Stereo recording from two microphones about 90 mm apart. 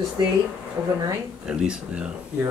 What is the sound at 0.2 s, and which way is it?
Speech, 55° right (ahead or behind).